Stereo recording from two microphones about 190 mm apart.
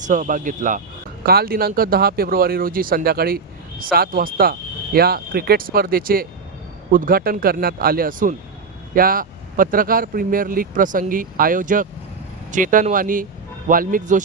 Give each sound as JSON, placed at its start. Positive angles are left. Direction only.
{"t": 0.0, "sound": "speech", "side_deg": -40}